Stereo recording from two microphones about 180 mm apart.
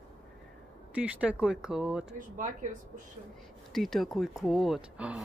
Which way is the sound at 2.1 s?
45° right (ahead or behind).